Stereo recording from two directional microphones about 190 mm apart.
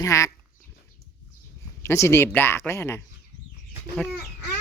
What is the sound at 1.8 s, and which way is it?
Speech, 15° left (ahead or behind).